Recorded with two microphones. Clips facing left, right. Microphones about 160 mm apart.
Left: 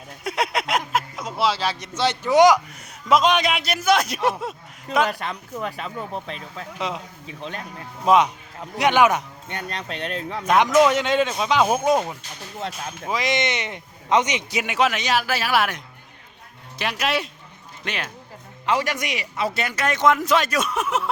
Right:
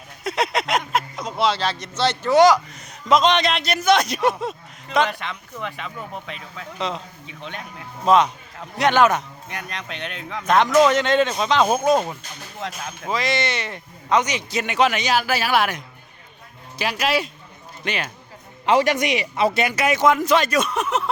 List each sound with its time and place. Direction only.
0.3 s speech: 10° left (ahead or behind)
4.9 s speech: 40° left (ahead or behind)
6.7 s speech: 10° left (ahead or behind)
7.3 s speech: 35° left (ahead or behind)
8.0 s speech: 10° left (ahead or behind)
9.5 s speech: 30° left (ahead or behind)
10.4 s speech: 10° left (ahead or behind)
14.6 s a man's voice: 5° left (ahead or behind)
18.6 s a man's voice: 20° right (ahead or behind); by 21.1 s 5° left (ahead or behind)